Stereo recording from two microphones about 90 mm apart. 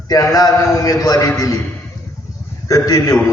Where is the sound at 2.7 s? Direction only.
40° left (ahead or behind).